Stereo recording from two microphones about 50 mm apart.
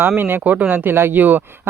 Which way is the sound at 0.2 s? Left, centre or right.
Right.